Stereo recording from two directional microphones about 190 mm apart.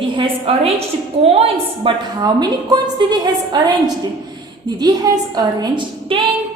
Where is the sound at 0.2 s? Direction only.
30° right (ahead or behind).